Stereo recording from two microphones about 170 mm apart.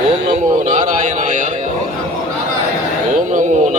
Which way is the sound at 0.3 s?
50° right (ahead or behind).